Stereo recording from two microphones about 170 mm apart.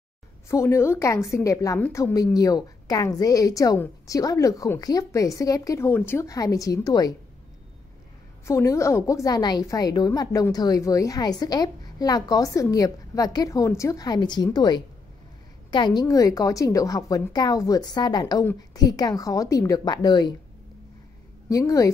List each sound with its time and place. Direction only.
0.5 s a woman's voice: 15° left (ahead or behind)
8.5 s a woman's voice: 15° left (ahead or behind)
21.5 s a woman's voice: 20° left (ahead or behind)